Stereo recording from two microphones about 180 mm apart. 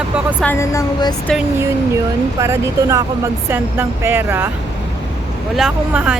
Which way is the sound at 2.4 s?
15° right (ahead or behind).